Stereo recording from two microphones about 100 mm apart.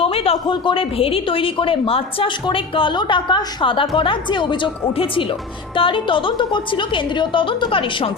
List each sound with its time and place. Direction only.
0.0 s speech: 70° left (ahead or behind)